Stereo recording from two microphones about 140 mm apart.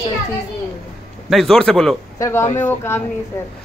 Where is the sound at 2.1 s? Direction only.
20° left (ahead or behind).